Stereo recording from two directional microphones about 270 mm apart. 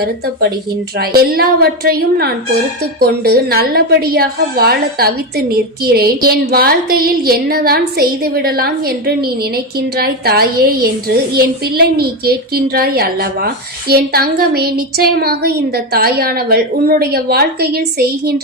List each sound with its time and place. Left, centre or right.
0.0 s a woman's voice: right